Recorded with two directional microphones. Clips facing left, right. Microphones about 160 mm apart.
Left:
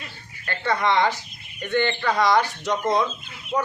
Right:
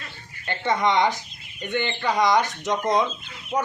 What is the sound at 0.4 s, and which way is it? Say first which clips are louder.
A man's voice: right 1 dB; 20° right (ahead or behind).